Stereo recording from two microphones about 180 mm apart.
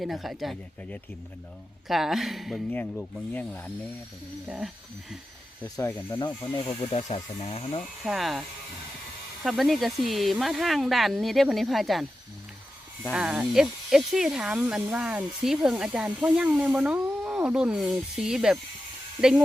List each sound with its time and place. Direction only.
0.0 s speech: centre (ahead or behind)
4.4 s speech: 5° right (ahead or behind)
5.6 s speech: 15° left (ahead or behind)
7.1 s speech: 35° left (ahead or behind)
8.0 s speech: centre (ahead or behind)
13.1 s speech: 5° right (ahead or behind)